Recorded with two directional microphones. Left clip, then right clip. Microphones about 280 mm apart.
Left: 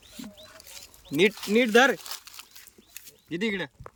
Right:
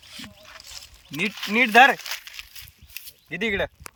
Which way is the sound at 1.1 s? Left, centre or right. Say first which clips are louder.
Even; centre.